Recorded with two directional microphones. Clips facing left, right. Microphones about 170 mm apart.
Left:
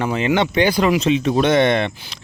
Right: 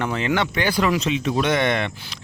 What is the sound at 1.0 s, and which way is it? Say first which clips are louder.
Speech: left 5 dB; 30° left (ahead or behind).